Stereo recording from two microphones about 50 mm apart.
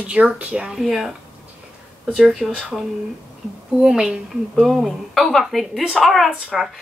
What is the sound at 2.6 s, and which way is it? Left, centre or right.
A woman's voice, centre.